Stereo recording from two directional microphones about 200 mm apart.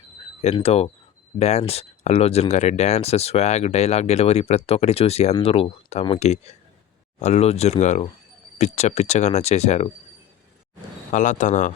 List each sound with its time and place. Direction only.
0.4 s speech: 30° left (ahead or behind)
11.1 s speech: 40° left (ahead or behind)